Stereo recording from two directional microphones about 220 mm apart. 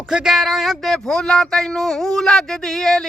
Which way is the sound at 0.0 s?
5° right (ahead or behind).